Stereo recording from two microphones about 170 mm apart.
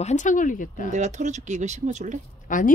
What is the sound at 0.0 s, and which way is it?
Speech, 45° left (ahead or behind).